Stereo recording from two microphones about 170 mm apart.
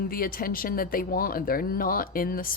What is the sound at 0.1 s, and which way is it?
Speech, 60° left (ahead or behind).